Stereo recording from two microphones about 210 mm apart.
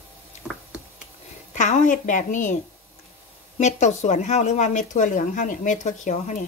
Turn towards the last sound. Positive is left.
turn(degrees=35)  # may be behind; listen again after turning